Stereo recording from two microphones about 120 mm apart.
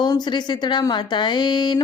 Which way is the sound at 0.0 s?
35° left (ahead or behind).